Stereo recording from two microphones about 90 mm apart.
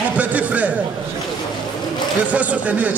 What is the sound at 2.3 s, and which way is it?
Speech, 15° right (ahead or behind).